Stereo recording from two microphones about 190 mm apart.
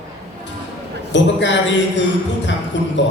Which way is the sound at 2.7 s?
70° left (ahead or behind).